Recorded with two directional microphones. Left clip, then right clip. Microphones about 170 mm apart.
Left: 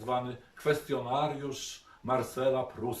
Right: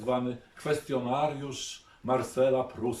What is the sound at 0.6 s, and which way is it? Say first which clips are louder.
Speech: even; 5° right (ahead or behind).